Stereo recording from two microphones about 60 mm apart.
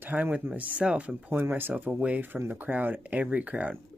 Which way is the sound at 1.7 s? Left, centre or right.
Right.